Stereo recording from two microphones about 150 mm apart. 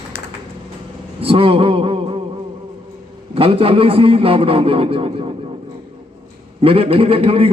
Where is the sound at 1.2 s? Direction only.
40° right (ahead or behind).